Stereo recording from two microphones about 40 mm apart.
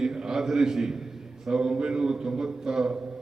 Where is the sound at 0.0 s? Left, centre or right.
Centre.